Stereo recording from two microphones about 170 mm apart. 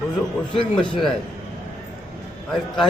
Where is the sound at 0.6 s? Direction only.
30° left (ahead or behind).